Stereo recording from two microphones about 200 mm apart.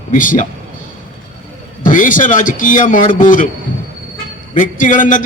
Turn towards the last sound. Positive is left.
turn(degrees=40)  # may be behind; listen again after turning